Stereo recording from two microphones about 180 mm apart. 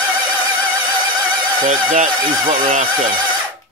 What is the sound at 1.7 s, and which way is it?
Speech, 45° right (ahead or behind).